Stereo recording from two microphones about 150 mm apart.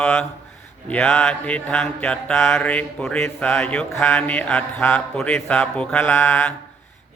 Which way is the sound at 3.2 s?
15° left (ahead or behind).